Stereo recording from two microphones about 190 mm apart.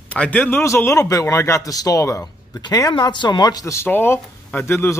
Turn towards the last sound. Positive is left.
turn(degrees=10)  # may be behind; listen again after turning